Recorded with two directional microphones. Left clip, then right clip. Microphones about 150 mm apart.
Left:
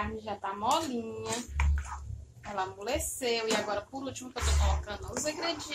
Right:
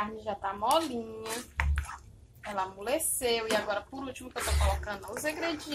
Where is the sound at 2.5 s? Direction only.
50° right (ahead or behind).